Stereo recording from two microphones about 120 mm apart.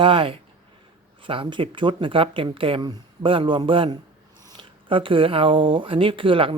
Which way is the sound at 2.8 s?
35° right (ahead or behind).